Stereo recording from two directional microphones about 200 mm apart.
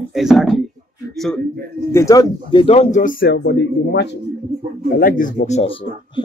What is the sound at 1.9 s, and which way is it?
Speech, 15° left (ahead or behind).